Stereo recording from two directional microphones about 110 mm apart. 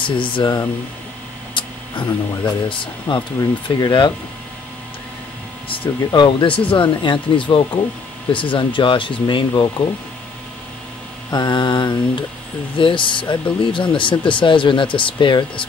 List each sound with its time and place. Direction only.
0.0 s speech: 50° left (ahead or behind)
1.5 s speech: 50° left (ahead or behind)
5.9 s speech: 40° left (ahead or behind)
11.2 s speech: 40° left (ahead or behind)